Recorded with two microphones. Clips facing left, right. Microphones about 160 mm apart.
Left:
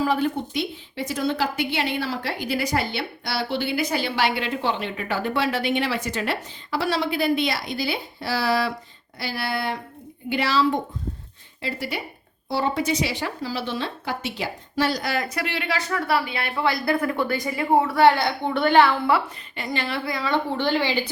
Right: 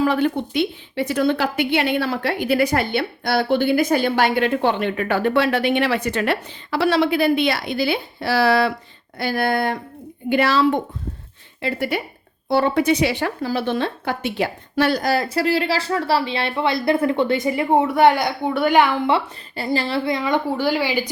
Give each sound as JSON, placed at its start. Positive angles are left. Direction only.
{"t": 0.0, "sound": "a woman's voice", "side_deg": -65}
{"t": 9.1, "sound": "a sound", "side_deg": -50}
{"t": 10.2, "sound": "a woman's voice", "side_deg": -55}
{"t": 15.0, "sound": "speech", "side_deg": -35}
{"t": 19.1, "sound": "speech", "side_deg": -30}